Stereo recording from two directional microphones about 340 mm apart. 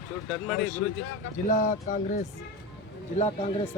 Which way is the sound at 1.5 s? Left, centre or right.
Left.